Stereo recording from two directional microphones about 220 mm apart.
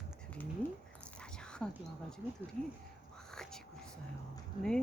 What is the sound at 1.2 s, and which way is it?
Whispering, 5° left (ahead or behind).